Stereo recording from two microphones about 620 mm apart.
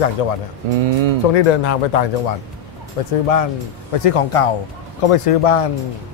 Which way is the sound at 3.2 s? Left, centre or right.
Left.